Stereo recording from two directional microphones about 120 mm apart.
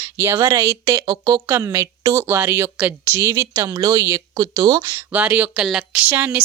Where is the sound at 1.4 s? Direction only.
20° right (ahead or behind); by 4.8 s 35° right (ahead or behind).